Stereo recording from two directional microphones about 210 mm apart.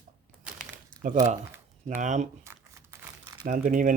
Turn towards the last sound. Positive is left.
turn(degrees=-40)  # may be behind; listen again after turning